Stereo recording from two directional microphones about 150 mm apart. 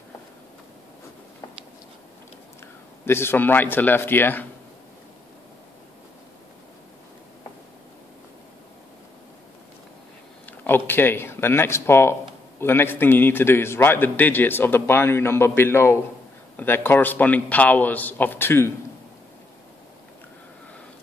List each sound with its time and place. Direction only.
3.1 s a man's voice: 15° left (ahead or behind)
10.4 s a man's voice: 10° left (ahead or behind)